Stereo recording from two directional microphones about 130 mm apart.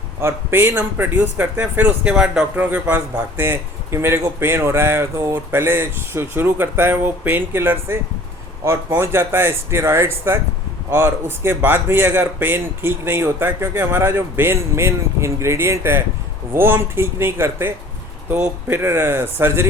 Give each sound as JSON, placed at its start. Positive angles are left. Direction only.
{"t": 0.2, "sound": "a man's voice", "side_deg": -20}